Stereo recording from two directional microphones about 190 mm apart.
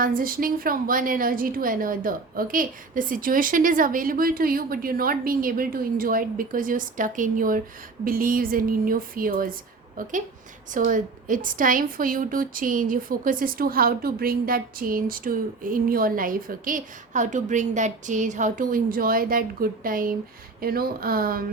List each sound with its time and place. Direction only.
0.0 s a woman's voice: 50° right (ahead or behind)